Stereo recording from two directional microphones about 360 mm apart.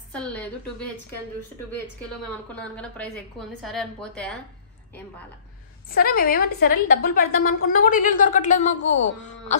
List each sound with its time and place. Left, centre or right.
0.1 s a woman's voice: centre
2.5 s a woman's voice: centre
5.9 s a woman's voice: left